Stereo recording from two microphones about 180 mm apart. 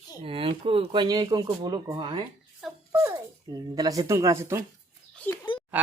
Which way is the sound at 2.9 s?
20° right (ahead or behind).